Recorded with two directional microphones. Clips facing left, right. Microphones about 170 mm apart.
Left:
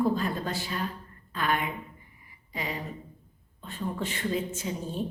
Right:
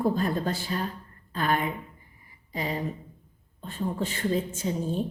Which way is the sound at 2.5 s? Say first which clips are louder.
Right 4 dB; 35° right (ahead or behind).